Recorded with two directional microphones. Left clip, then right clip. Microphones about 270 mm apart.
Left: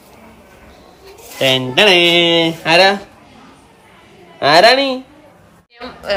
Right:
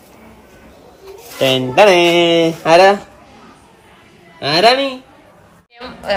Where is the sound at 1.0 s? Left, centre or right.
Centre.